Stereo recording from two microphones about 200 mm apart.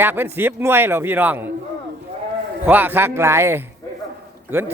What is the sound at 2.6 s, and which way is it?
A man's voice, 10° right (ahead or behind).